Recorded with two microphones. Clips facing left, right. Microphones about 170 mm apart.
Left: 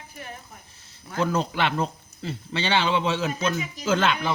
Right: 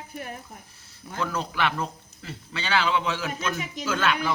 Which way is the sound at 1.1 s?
25° left (ahead or behind).